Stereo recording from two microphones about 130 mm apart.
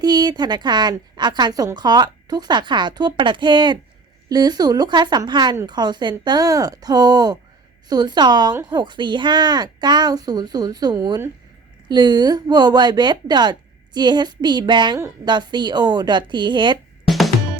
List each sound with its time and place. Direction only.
0.0 s a woman's voice: 30° right (ahead or behind)
17.1 s music: centre (ahead or behind)